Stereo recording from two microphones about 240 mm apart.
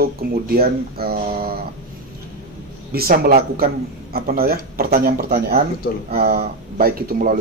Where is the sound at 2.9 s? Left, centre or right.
Right.